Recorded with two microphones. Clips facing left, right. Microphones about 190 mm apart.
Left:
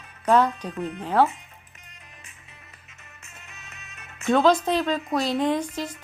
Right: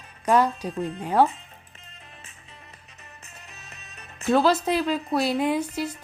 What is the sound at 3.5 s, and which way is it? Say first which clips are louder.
Music: right 1 dB; 35° right (ahead or behind).